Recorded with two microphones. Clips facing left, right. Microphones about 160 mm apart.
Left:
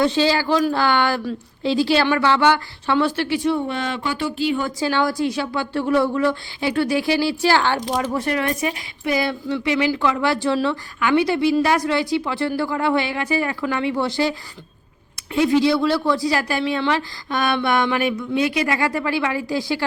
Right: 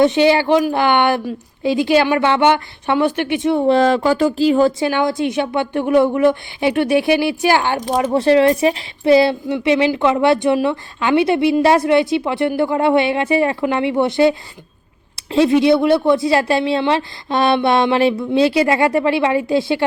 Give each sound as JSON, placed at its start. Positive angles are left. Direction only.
{"t": 0.0, "sound": "speech", "side_deg": -20}
{"t": 3.6, "sound": "speech", "side_deg": -35}
{"t": 4.8, "sound": "speech", "side_deg": -20}
{"t": 7.9, "sound": "speech", "side_deg": -25}